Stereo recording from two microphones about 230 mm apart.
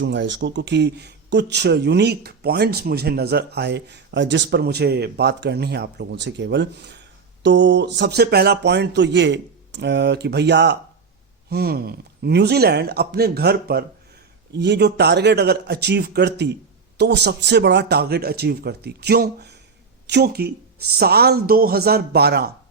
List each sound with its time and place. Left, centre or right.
0.0 s speech: right